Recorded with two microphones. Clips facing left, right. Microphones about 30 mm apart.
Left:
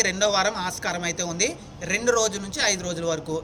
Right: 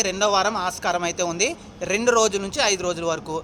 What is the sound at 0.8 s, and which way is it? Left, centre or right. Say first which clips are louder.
Speech: right 6 dB; centre.